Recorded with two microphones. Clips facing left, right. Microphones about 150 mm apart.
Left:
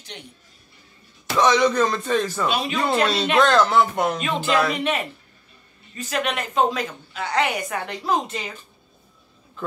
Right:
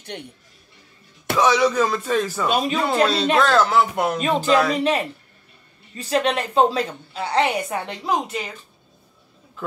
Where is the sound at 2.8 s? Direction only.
5° right (ahead or behind).